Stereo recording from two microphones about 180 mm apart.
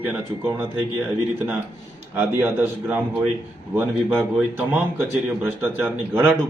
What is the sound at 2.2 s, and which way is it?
A man's voice, 10° right (ahead or behind).